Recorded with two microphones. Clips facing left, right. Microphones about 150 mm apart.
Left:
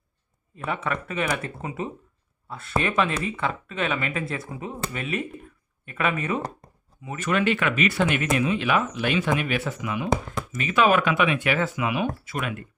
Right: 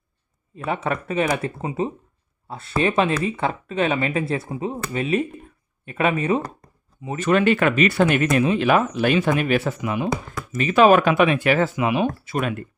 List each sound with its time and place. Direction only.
0.5 s speech: 35° right (ahead or behind)
10.1 s speech: 25° left (ahead or behind)
10.6 s speech: 35° right (ahead or behind)